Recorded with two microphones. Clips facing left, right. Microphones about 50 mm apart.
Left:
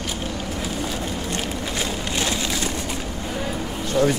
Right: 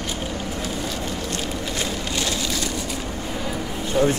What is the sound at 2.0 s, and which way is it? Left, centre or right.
Rain on surface, centre.